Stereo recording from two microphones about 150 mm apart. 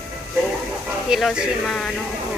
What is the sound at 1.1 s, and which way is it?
Speech, centre (ahead or behind).